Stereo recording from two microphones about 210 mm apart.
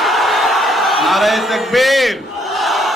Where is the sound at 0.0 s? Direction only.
Centre (ahead or behind).